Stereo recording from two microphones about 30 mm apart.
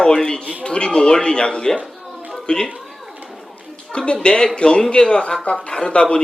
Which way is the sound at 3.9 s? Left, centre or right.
Left.